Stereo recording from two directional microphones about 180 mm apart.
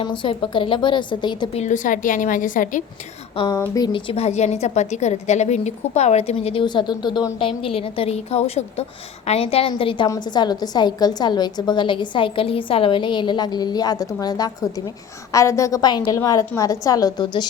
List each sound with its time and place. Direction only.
0.0 s a woman's voice: 30° left (ahead or behind)
1.6 s a woman's voice: 45° left (ahead or behind)
3.3 s a woman's voice: 25° left (ahead or behind)
4.1 s a woman's voice: 35° left (ahead or behind)